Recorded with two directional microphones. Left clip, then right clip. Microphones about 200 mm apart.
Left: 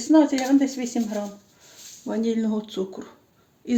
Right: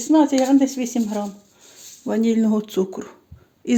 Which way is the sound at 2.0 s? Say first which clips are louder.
Right 5 dB; 45° right (ahead or behind).